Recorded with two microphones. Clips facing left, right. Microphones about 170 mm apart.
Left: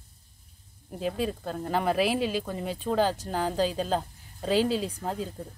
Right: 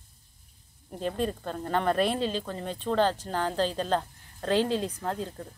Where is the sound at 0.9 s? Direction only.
5° left (ahead or behind).